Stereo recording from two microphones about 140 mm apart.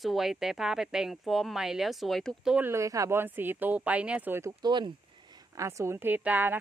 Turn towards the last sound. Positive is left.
turn(degrees=-10)  # may be behind; listen again after turning